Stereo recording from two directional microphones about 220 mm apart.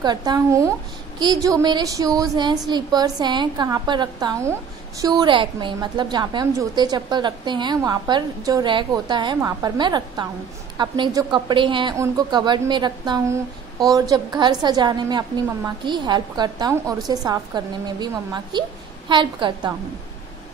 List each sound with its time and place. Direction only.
0.0 s a woman's voice: 20° right (ahead or behind)